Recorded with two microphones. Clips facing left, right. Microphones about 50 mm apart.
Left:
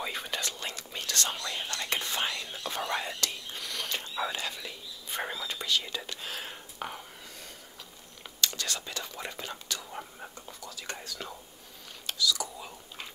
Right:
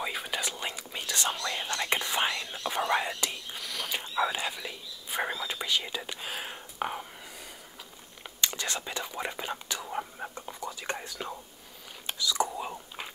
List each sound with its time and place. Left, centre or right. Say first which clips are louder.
0.0 s whispering: right 2 dB; centre
3.5 s a sound: right 1 dB; centre
4.0 s whispering: right 4 dB; centre
8.4 s whispering: right 1 dB; right
12.1 s chewing: right 2 dB; right